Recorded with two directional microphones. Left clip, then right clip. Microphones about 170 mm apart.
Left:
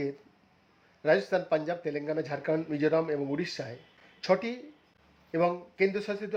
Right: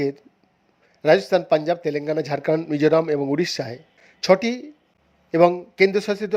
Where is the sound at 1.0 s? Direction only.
35° right (ahead or behind).